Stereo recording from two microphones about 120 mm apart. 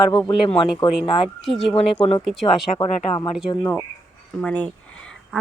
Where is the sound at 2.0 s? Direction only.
50° left (ahead or behind).